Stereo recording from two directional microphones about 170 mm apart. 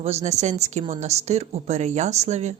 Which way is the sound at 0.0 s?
40° right (ahead or behind).